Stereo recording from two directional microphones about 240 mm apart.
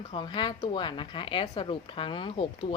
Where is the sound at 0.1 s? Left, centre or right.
Centre.